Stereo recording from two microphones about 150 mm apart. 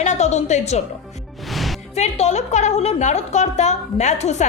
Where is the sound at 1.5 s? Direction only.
Centre (ahead or behind).